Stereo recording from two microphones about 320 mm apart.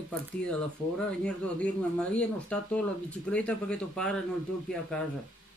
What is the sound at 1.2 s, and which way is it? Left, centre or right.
Speech, centre.